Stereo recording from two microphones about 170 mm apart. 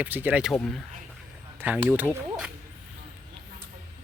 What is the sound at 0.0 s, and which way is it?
Speech, 10° right (ahead or behind).